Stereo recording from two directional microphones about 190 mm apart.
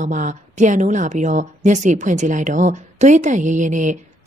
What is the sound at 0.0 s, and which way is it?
A woman's voice, 40° right (ahead or behind).